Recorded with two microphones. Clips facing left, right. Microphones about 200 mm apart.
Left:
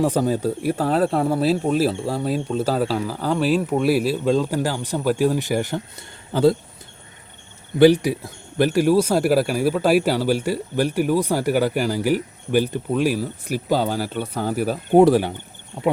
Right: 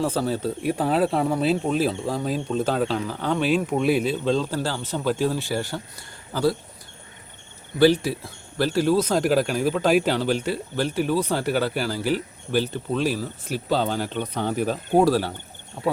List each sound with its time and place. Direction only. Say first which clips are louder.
0.0 s speech: left 4 dB; 15° left (ahead or behind)
0.6 s speech: even; centre (ahead or behind); by 6.6 s 25° left (ahead or behind)
7.8 s speech: left 4 dB; 15° left (ahead or behind)
14.9 s speech: left 5 dB; 20° left (ahead or behind)